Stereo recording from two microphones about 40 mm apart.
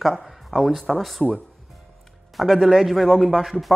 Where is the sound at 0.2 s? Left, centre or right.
Centre.